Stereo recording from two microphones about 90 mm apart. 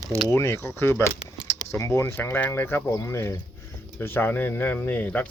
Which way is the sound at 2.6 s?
25° left (ahead or behind).